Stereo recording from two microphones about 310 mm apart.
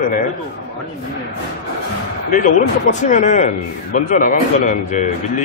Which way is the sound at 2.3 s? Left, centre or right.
Left.